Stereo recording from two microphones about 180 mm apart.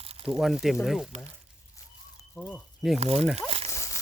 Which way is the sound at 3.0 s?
35° right (ahead or behind).